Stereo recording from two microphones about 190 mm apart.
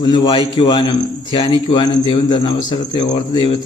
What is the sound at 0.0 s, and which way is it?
A man's voice, 20° left (ahead or behind).